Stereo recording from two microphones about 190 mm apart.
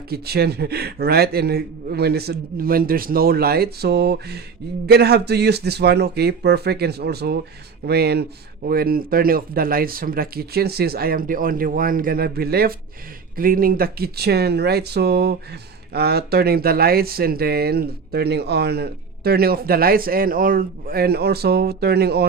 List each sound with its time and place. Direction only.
0.1 s speech: 55° right (ahead or behind)